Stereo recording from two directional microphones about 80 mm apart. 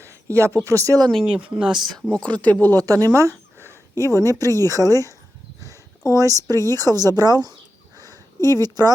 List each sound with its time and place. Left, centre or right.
0.0 s a sound: right
0.6 s speech: right
1.3 s speech: centre
2.1 s speech: centre
2.7 s speech: right
7.9 s a sound: right